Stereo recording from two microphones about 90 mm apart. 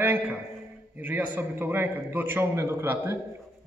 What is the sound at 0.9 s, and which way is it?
A man's voice, 20° right (ahead or behind).